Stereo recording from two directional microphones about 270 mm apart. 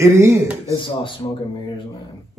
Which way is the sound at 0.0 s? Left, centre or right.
Centre.